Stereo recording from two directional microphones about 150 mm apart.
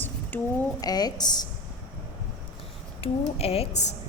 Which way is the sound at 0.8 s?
25° left (ahead or behind).